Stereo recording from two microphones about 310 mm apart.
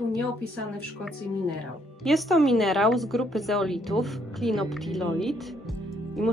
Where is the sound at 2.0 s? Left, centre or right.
Centre.